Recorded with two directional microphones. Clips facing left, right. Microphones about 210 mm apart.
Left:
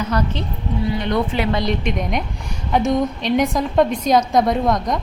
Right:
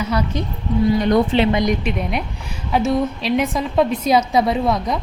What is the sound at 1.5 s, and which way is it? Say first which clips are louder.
Speech: right 3 dB; 15° right (ahead or behind).